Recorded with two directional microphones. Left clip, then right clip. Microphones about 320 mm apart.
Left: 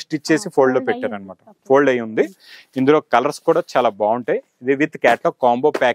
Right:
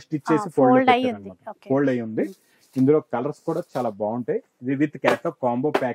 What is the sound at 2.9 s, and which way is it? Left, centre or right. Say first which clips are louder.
Speech: left 7 dB; centre.